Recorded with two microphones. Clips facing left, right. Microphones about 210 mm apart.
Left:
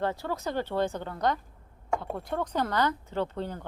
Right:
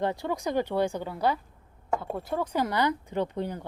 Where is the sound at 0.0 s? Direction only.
15° right (ahead or behind).